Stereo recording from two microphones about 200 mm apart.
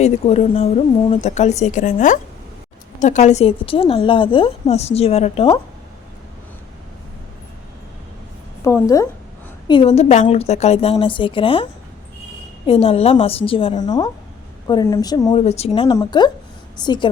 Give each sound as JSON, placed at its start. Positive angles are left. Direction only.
{"t": 0.0, "sound": "a woman's voice", "side_deg": 30}
{"t": 8.6, "sound": "a woman's voice", "side_deg": 15}
{"t": 9.6, "sound": "a woman's voice", "side_deg": 25}